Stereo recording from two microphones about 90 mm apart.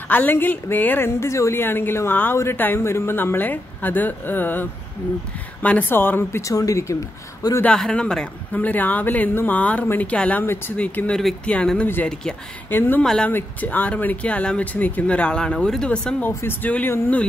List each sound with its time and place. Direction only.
0.1 s speech: 20° left (ahead or behind)
6.4 s speech: 40° left (ahead or behind)
7.6 s speech: 10° left (ahead or behind)
12.6 s speech: 25° left (ahead or behind)
13.0 s speech: 5° left (ahead or behind)
13.3 s speech: 20° left (ahead or behind)
16.3 s speech: 25° left (ahead or behind)